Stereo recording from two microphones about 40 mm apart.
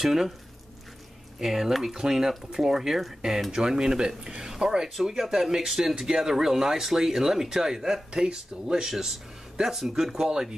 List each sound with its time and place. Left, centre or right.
0.0 s speech: centre
1.4 s speech: centre